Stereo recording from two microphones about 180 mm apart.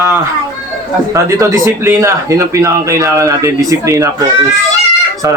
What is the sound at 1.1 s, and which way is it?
Speech, 15° right (ahead or behind).